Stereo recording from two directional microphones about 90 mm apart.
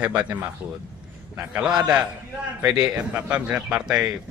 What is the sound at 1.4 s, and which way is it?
A man's voice, 15° right (ahead or behind).